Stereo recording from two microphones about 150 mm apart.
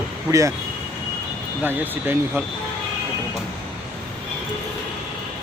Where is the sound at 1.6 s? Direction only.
15° right (ahead or behind).